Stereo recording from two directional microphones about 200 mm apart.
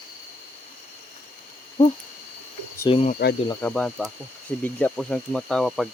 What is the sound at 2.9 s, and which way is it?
Speech, 30° left (ahead or behind).